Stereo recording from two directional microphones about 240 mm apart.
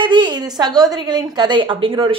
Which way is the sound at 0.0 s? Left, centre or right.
Centre.